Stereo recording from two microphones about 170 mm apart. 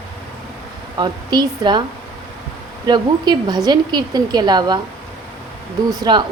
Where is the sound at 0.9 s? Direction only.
25° right (ahead or behind).